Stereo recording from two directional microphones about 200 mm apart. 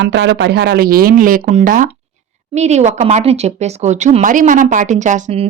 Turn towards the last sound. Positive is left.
turn(degrees=-35)  # may be behind; listen again after turning